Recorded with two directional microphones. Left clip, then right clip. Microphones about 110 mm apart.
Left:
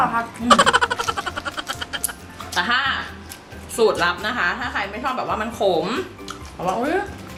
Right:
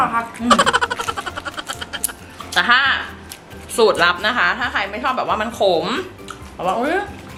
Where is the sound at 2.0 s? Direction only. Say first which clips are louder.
Right 1 dB; 15° right (ahead or behind).